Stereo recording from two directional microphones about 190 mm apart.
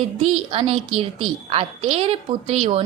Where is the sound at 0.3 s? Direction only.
30° right (ahead or behind).